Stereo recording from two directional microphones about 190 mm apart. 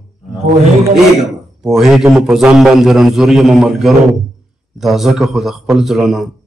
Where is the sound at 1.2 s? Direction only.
Centre (ahead or behind).